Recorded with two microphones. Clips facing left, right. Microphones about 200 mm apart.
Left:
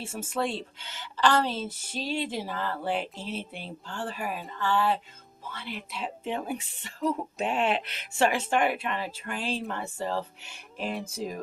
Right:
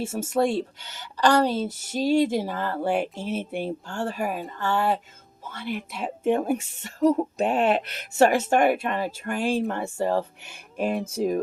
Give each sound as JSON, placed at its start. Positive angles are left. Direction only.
{"t": 0.0, "sound": "a woman's voice", "side_deg": -40}